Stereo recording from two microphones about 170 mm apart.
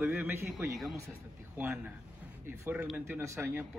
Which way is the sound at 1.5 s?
15° right (ahead or behind).